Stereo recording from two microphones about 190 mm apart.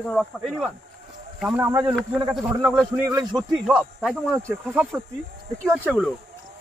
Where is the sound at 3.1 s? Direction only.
20° right (ahead or behind).